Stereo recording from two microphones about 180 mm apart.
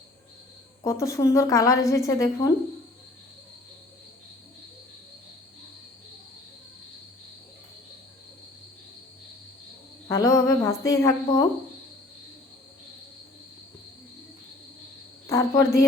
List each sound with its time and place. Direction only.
0.9 s a woman's voice: 15° left (ahead or behind)
10.1 s a woman's voice: 15° left (ahead or behind)
15.3 s a woman's voice: 15° left (ahead or behind)